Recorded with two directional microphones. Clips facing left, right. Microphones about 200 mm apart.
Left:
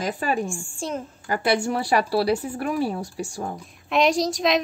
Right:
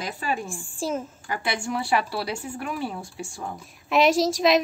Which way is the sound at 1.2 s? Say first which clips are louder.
Left 10 dB; 40° left (ahead or behind).